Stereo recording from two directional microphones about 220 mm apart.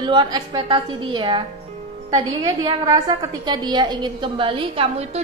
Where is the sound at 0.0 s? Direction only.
20° right (ahead or behind).